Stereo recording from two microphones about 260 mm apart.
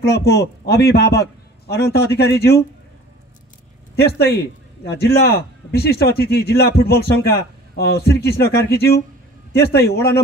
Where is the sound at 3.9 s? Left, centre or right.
Left.